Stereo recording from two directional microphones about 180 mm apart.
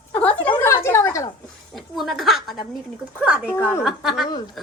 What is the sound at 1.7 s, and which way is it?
A woman's voice, centre (ahead or behind).